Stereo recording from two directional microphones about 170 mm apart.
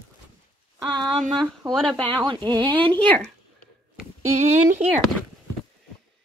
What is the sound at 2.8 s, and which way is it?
Speech, 10° left (ahead or behind).